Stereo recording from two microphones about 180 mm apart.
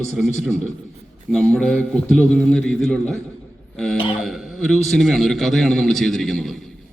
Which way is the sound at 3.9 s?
30° left (ahead or behind).